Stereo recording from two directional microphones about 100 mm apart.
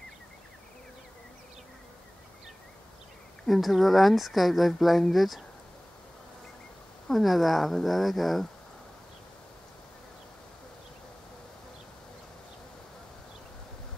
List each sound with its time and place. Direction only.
3.4 s speech: centre (ahead or behind)
7.1 s speech: centre (ahead or behind)